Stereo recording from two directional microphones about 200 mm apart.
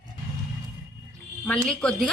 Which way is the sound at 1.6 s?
Centre (ahead or behind).